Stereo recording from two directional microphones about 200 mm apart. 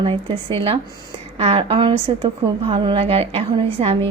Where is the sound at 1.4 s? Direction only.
30° right (ahead or behind).